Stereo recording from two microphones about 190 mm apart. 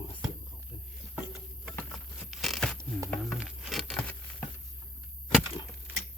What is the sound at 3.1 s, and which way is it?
Patter, centre (ahead or behind).